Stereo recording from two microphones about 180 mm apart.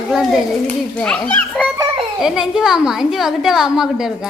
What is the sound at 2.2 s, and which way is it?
A woman's voice, 5° right (ahead or behind).